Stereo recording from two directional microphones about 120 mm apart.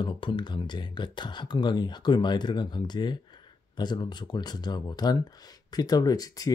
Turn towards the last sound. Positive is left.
turn(degrees=30)  # may be behind; listen again after turning